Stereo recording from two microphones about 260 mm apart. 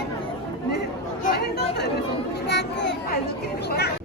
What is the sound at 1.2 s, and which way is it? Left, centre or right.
Chatter, left.